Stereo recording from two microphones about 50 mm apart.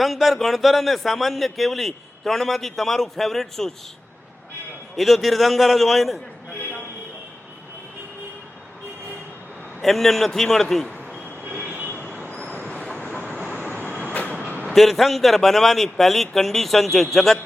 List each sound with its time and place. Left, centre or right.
0.0 s a man's voice: centre
4.9 s a man's voice: centre
9.8 s a man's voice: centre
11.9 s train: left
12.9 s vehicle: centre
13.1 s vehicle: left
14.7 s a man's voice: centre